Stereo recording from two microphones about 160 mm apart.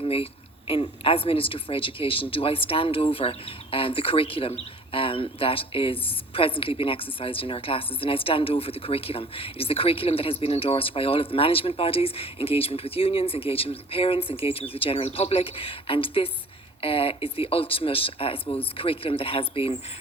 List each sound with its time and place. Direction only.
0.0 s speech: 35° left (ahead or behind)